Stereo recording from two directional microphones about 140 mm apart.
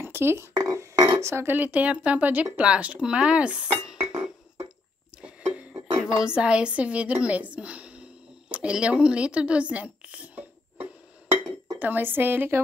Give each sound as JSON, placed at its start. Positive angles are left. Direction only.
{"t": 0.0, "sound": "a sound", "side_deg": -15}
{"t": 0.6, "sound": "burping", "side_deg": -30}
{"t": 1.2, "sound": "speech", "side_deg": -15}
{"t": 5.5, "sound": "music", "side_deg": -10}
{"t": 11.8, "sound": "speech", "side_deg": -15}